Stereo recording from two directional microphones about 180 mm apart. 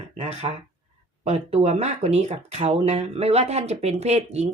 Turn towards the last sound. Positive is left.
turn(degrees=-40)  # may be behind; listen again after turning